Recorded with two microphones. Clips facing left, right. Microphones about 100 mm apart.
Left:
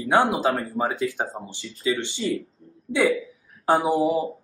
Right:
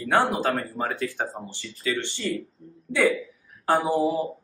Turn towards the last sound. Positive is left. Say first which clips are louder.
# left 2 dB
turn(degrees=15)  # may be behind; listen again after turning